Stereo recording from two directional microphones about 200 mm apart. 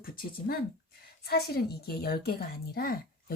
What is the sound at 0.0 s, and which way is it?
A woman's voice, 45° left (ahead or behind).